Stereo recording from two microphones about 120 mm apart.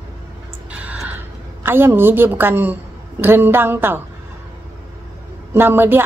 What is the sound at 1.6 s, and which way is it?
A woman's voice, 20° right (ahead or behind).